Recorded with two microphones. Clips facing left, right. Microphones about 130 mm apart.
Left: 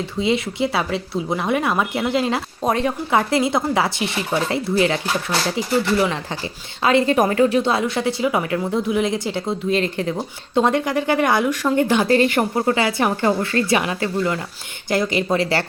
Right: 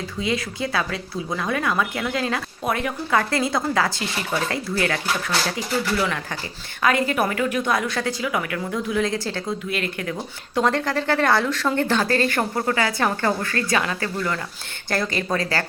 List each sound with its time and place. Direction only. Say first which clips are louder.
0.2 s a woman's voice: left 5 dB; 25° left (ahead or behind)
3.1 s a woman's voice: left 3 dB; 20° left (ahead or behind)